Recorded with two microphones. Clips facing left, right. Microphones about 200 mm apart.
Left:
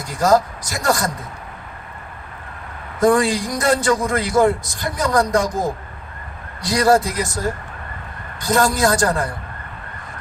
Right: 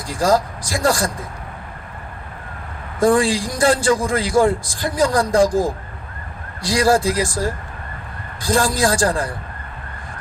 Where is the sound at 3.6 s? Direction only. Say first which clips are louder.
Right 2 dB; 30° right (ahead or behind).